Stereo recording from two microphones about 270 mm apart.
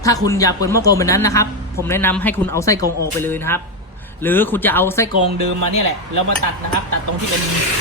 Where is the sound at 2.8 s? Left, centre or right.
Right.